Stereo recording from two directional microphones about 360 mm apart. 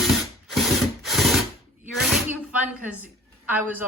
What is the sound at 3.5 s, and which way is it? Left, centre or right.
Speech, centre.